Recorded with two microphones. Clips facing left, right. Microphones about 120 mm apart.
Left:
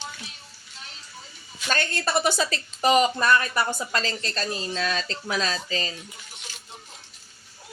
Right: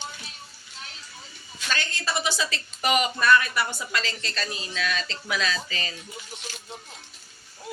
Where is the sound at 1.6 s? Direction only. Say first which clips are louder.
Left 4 dB; 50° left (ahead or behind); by 5.9 s 35° left (ahead or behind).